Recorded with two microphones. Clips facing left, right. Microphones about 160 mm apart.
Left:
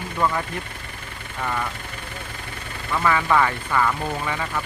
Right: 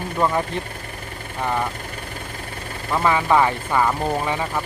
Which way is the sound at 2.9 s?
25° right (ahead or behind).